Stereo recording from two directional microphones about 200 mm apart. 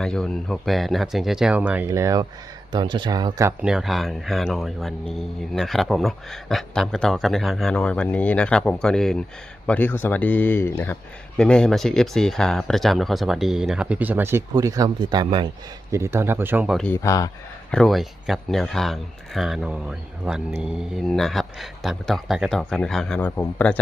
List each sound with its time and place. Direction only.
0.0 s speech: 5° left (ahead or behind)
16.8 s speech: 15° left (ahead or behind)
17.7 s speech: centre (ahead or behind)